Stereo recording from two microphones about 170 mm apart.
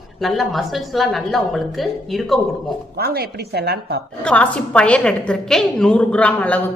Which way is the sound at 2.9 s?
65° right (ahead or behind).